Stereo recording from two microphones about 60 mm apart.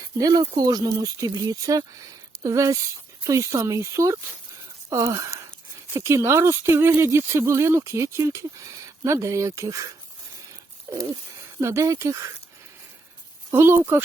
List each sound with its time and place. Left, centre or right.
0.2 s speech: right
2.4 s speech: right
5.9 s speech: right
11.6 s speech: right
13.5 s speech: right